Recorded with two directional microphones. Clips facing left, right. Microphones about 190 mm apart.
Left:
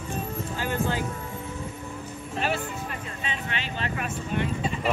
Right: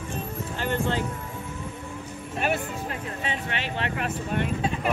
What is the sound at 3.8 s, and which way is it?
Speech, 60° right (ahead or behind).